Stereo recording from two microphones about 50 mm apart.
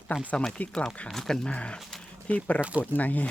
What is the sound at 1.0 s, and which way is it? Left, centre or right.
Speech, centre.